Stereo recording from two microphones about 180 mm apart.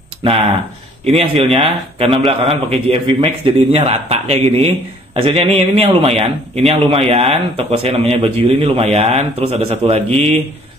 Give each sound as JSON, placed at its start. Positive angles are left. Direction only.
{"t": 0.2, "sound": "speech", "side_deg": -30}